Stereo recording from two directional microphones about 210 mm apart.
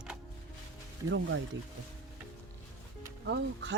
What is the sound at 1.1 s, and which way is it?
Speech, 65° right (ahead or behind).